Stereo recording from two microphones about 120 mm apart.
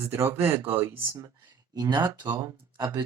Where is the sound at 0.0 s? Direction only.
20° right (ahead or behind).